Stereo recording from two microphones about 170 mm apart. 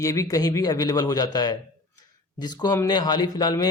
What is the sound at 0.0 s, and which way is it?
Speech, 20° left (ahead or behind).